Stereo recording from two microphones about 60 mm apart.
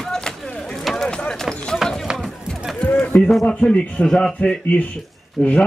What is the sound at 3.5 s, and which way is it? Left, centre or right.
Speech, left.